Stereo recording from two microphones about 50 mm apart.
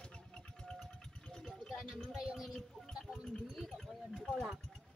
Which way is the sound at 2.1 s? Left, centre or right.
Centre.